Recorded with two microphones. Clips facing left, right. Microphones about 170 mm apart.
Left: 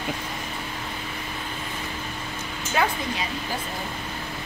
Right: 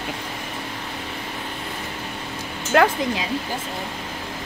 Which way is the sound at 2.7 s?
75° right (ahead or behind).